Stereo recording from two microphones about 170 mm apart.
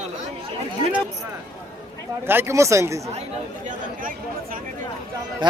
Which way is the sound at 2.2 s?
15° right (ahead or behind).